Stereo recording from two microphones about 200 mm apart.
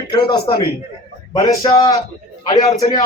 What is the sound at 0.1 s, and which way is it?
A man's voice, 20° left (ahead or behind).